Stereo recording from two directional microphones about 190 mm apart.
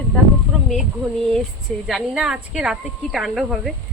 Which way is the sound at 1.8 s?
Centre (ahead or behind).